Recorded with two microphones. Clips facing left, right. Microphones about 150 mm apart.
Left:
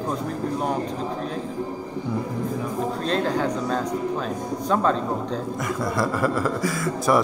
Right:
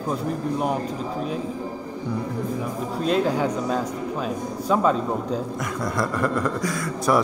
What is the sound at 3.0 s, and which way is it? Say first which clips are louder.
A man's voice: right 4 dB; 10° right (ahead or behind).